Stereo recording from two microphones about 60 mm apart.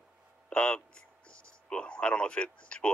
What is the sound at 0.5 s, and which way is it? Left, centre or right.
Speech, centre.